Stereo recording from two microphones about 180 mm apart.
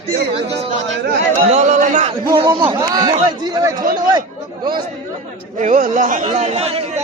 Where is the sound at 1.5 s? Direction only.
40° right (ahead or behind).